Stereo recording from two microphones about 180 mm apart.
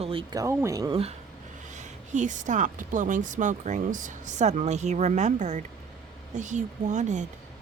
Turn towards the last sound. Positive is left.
turn(degrees=-40)  # may be behind; listen again after turning